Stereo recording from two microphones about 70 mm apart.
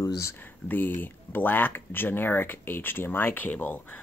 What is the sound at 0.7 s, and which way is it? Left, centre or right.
Speech, left.